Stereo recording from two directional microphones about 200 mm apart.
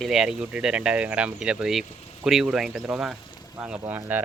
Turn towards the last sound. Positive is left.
turn(degrees=-10)  # may be behind; listen again after turning